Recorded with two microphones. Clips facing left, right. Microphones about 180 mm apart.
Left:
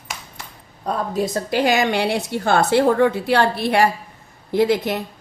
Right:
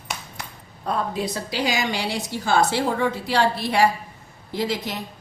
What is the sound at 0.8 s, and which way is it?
A woman's voice, 45° left (ahead or behind).